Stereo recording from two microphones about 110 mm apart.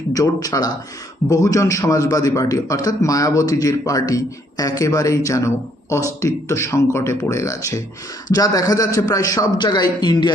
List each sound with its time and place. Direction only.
0.1 s a man's voice: 35° left (ahead or behind)